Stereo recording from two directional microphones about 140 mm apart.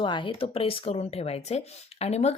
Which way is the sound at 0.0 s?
35° left (ahead or behind).